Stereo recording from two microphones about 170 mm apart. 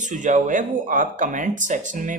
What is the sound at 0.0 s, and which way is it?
A man's voice, 45° right (ahead or behind).